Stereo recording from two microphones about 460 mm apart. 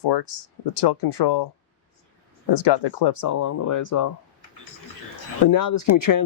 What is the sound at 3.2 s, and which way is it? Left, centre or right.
Speech, left.